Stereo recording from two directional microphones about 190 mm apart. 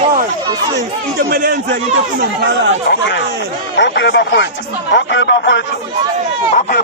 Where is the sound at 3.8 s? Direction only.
65° left (ahead or behind).